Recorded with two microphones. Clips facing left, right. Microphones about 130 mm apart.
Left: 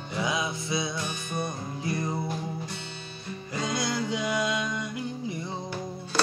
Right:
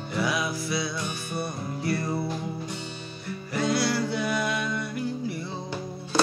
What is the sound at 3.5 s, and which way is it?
Music, 20° left (ahead or behind).